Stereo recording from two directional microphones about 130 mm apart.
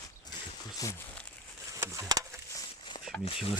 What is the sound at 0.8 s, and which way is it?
Speech, 25° left (ahead or behind).